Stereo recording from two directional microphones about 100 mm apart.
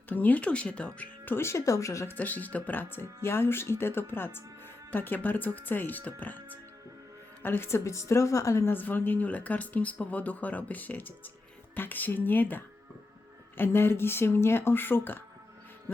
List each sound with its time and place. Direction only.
0.1 s a woman's voice: 15° left (ahead or behind)
2.1 s a woman's voice: 15° left (ahead or behind)
7.4 s a woman's voice: 25° left (ahead or behind)